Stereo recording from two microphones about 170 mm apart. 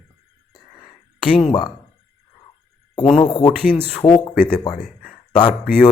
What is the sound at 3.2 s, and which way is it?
Speech, 25° left (ahead or behind).